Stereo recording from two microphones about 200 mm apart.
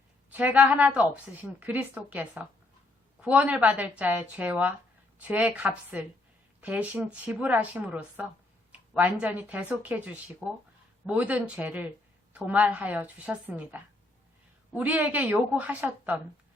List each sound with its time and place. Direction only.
0.3 s a woman's voice: 5° right (ahead or behind)